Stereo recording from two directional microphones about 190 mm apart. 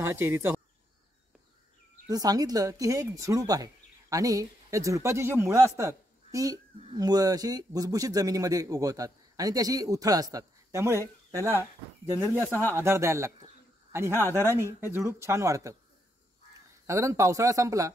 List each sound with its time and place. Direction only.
0.0 s speech: 15° right (ahead or behind)
2.0 s a man's voice: 20° right (ahead or behind)
16.8 s speech: 15° right (ahead or behind)